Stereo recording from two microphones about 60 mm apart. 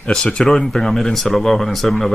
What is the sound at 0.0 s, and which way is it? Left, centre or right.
Speech, centre.